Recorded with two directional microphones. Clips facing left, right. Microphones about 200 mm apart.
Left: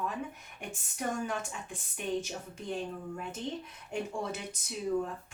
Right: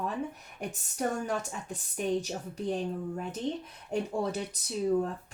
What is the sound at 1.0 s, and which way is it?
Speech, 40° right (ahead or behind).